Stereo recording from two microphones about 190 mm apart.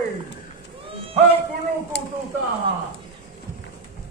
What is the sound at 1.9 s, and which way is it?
Speech, 60° left (ahead or behind).